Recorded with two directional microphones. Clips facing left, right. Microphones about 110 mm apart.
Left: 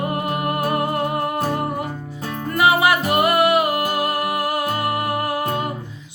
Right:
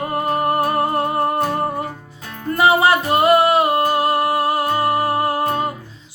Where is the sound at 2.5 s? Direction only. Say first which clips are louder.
Right 2 dB; 30° right (ahead or behind).